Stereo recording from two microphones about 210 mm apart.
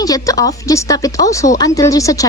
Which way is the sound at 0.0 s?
15° left (ahead or behind).